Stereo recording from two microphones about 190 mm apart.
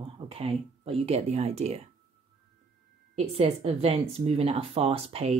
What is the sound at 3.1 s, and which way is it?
Speech, 30° right (ahead or behind).